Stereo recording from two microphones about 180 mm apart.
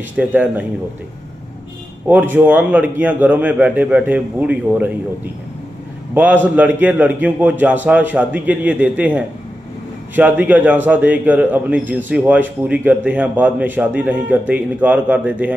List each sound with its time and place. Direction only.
0.2 s a man's voice: 10° right (ahead or behind)
2.0 s a man's voice: 10° right (ahead or behind)
6.1 s a man's voice: 10° right (ahead or behind)